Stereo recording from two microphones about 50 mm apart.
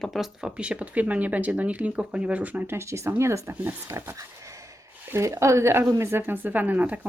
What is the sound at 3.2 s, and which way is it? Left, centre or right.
Speech, right.